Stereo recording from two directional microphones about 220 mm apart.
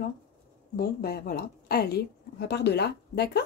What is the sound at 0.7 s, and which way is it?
A woman's voice, 45° left (ahead or behind).